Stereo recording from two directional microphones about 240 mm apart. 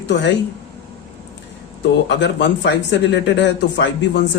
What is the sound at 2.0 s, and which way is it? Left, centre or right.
Speech, left.